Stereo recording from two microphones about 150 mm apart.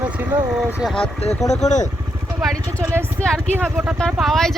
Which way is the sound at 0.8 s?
5° left (ahead or behind).